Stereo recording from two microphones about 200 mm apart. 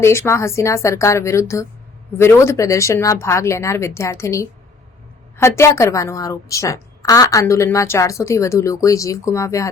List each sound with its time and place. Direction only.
0.0 s a woman's voice: 15° left (ahead or behind)